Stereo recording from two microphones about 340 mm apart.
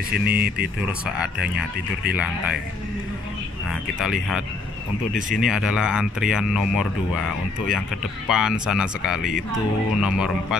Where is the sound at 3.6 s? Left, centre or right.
Centre.